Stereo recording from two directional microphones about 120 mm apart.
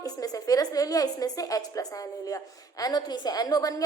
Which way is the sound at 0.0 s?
30° left (ahead or behind).